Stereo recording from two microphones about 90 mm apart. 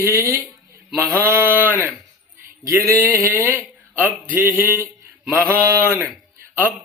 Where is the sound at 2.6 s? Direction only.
40° right (ahead or behind).